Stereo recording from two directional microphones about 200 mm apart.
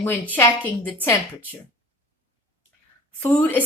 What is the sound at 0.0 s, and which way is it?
A woman's voice, 10° left (ahead or behind).